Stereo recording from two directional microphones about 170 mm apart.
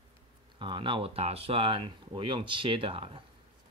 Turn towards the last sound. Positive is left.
turn(degrees=-30)  # may be behind; listen again after turning